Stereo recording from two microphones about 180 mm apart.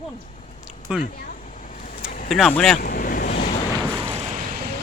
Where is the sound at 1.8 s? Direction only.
45° left (ahead or behind).